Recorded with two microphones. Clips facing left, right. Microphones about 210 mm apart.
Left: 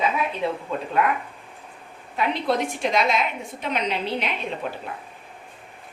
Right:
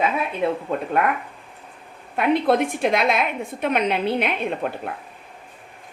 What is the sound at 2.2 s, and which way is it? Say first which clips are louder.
A woman's voice: right 5 dB; 55° right (ahead or behind).